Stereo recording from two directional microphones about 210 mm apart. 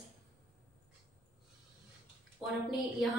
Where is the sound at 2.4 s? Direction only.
Centre (ahead or behind).